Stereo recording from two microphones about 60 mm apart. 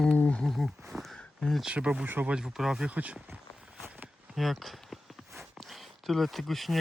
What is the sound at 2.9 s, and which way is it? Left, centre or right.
Speech, right.